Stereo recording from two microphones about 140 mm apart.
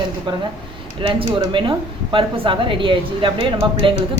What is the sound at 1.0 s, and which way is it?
Speech, 40° right (ahead or behind).